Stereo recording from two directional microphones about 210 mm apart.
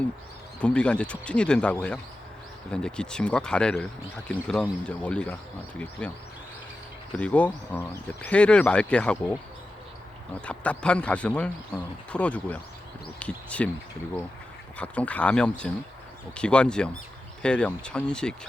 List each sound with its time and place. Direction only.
0.6 s speech: 5° left (ahead or behind)
7.2 s speech: 5° left (ahead or behind)
10.4 s speech: 5° left (ahead or behind)
14.8 s speech: 5° left (ahead or behind)